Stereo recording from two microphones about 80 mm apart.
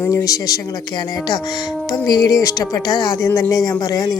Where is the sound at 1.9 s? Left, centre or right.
Left.